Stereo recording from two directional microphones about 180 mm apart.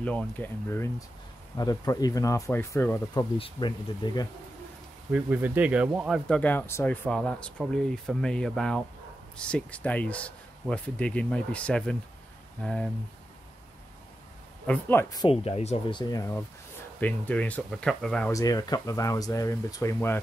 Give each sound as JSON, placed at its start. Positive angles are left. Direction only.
{"t": 0.0, "sound": "speech", "side_deg": 5}
{"t": 3.3, "sound": "speech", "side_deg": 30}
{"t": 5.1, "sound": "speech", "side_deg": -10}
{"t": 14.7, "sound": "speech", "side_deg": 10}
{"t": 15.4, "sound": "speech", "side_deg": 35}
{"t": 16.0, "sound": "speech", "side_deg": 20}
{"t": 18.3, "sound": "speech", "side_deg": 20}